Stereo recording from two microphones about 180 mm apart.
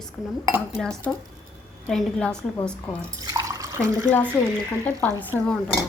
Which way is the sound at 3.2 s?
20° right (ahead or behind).